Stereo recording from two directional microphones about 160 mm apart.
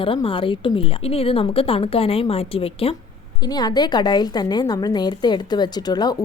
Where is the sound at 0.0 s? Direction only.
35° left (ahead or behind).